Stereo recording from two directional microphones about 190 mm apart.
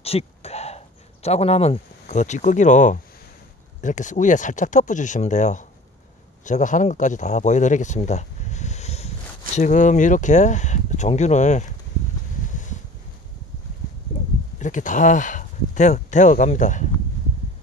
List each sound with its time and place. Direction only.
0.0 s speech: 30° left (ahead or behind)
14.1 s a sound: 40° left (ahead or behind)
14.6 s speech: 40° left (ahead or behind)